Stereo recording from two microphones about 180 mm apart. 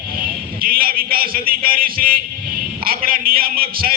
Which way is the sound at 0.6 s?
55° right (ahead or behind).